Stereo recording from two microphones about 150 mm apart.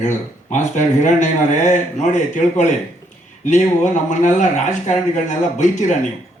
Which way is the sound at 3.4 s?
55° left (ahead or behind).